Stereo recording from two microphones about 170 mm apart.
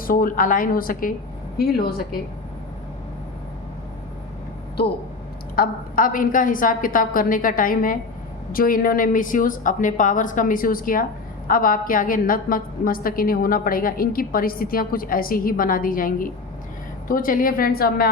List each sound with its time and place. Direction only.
0.0 s a woman's voice: 55° left (ahead or behind)
5.5 s a woman's voice: 55° left (ahead or behind)